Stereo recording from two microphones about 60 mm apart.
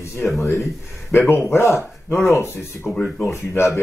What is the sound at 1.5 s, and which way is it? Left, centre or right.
Speech, left.